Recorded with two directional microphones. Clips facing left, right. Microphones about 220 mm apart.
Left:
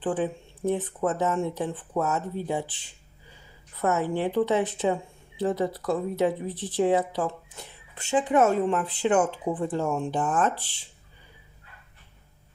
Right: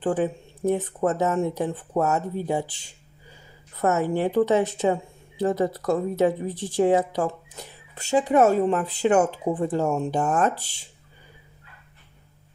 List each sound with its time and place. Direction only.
0.0 s speech: 40° right (ahead or behind)
3.8 s speech: 40° right (ahead or behind)